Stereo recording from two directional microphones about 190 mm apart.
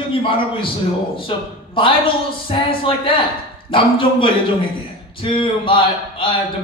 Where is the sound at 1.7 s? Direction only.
25° left (ahead or behind).